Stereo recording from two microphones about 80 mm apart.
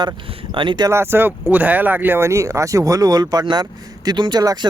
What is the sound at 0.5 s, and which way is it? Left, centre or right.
Speech, right.